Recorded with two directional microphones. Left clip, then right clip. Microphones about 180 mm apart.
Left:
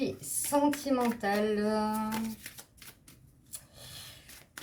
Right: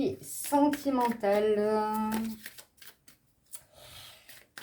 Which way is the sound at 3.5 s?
30° right (ahead or behind).